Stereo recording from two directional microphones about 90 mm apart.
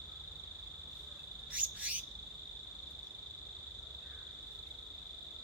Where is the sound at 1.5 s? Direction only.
15° right (ahead or behind).